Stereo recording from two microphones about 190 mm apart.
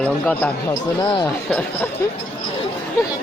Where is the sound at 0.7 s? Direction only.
20° left (ahead or behind).